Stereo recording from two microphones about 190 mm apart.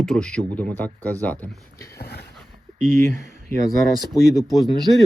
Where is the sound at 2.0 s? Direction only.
55° left (ahead or behind).